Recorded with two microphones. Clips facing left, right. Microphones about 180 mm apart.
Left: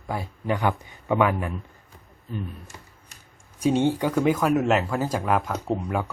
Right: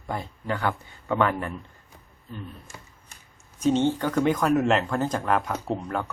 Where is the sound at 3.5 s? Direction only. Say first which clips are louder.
Left 1 dB; 10° left (ahead or behind).